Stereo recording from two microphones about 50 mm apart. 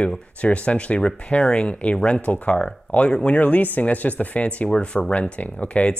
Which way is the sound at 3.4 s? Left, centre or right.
Left.